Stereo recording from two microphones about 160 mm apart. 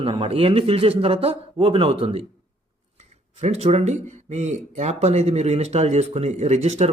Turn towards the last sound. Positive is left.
turn(degrees=-45)  # may be behind; listen again after turning